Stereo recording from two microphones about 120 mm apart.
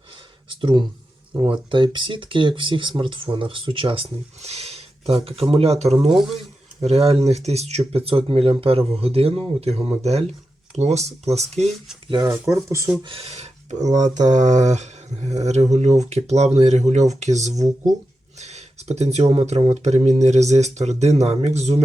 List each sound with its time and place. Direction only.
0.6 s speech: 40° right (ahead or behind); by 6.1 s 65° right (ahead or behind)
6.1 s speech: centre (ahead or behind)
6.8 s speech: 60° right (ahead or behind)
12.2 s speech: 25° right (ahead or behind)
13.0 s speech: 50° right (ahead or behind)